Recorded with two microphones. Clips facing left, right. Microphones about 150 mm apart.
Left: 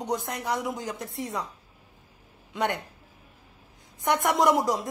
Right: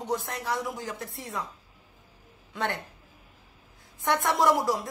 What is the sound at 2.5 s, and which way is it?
Speech, 20° left (ahead or behind).